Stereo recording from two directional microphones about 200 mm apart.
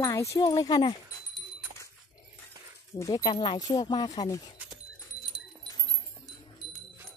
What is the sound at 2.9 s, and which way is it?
Speech, 20° left (ahead or behind).